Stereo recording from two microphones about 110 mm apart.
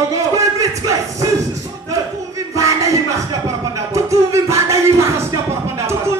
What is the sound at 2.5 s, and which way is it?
Music, 30° right (ahead or behind).